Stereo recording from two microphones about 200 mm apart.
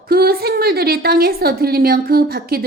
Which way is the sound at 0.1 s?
50° right (ahead or behind).